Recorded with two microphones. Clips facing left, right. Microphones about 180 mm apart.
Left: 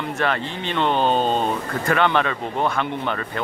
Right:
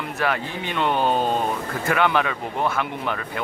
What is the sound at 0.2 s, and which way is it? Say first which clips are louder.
Speech: even; 10° right (ahead or behind).